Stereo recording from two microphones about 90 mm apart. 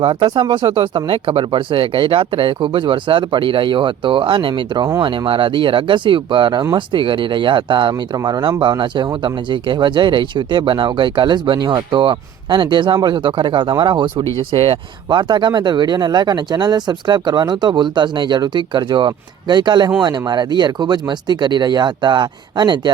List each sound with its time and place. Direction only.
0.0 s speech: 65° right (ahead or behind)
8.1 s speech: 45° right (ahead or behind)
14.5 s speech: 90° right
15.2 s speech: 55° right (ahead or behind)